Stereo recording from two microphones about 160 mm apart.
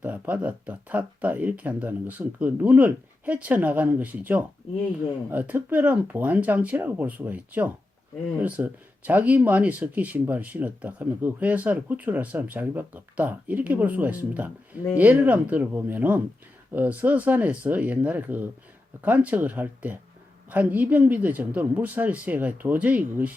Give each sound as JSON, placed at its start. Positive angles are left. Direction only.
{"t": 0.0, "sound": "speech", "side_deg": -10}